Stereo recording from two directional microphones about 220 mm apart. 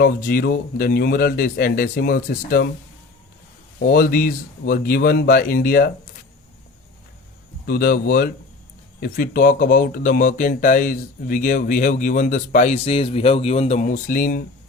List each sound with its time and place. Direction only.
0.0 s speech: 40° left (ahead or behind)
3.8 s speech: 40° left (ahead or behind)
7.7 s speech: 40° left (ahead or behind)